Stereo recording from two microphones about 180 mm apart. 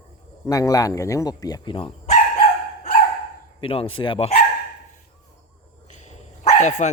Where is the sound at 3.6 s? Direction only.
30° left (ahead or behind).